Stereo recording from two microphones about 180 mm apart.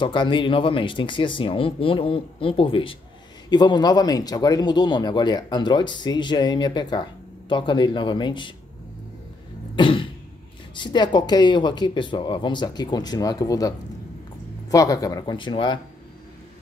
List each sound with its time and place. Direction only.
0.0 s speech: 25° left (ahead or behind)
9.8 s speech: 30° left (ahead or behind)